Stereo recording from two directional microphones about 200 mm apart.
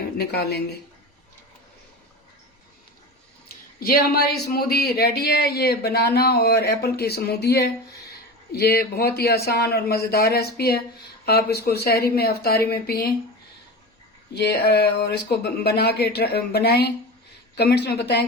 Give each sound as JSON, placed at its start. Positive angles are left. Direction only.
{"t": 0.2, "sound": "speech", "side_deg": 55}
{"t": 3.8, "sound": "speech", "side_deg": 50}
{"t": 14.3, "sound": "speech", "side_deg": 55}